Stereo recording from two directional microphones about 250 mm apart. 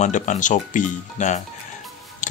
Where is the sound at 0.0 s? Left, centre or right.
Left.